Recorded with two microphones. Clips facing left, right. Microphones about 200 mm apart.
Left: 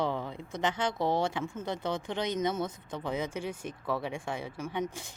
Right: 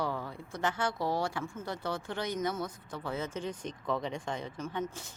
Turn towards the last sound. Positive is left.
turn(degrees=15)  # may be behind; listen again after turning